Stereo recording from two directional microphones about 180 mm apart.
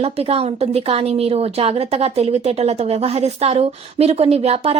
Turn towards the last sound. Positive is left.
turn(degrees=-35)  # may be behind; listen again after turning